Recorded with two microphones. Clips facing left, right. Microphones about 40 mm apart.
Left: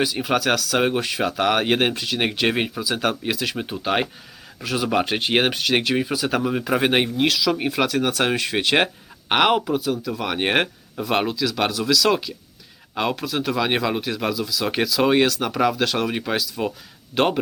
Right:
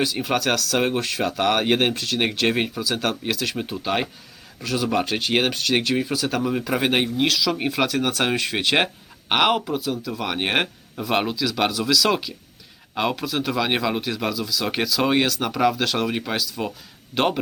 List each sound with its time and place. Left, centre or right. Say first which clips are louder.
0.0 s speech: left 1 dB; centre